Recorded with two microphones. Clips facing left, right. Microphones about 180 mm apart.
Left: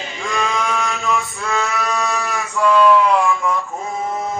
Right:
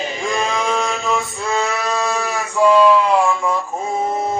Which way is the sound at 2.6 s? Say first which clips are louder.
Right 3 dB; 30° right (ahead or behind).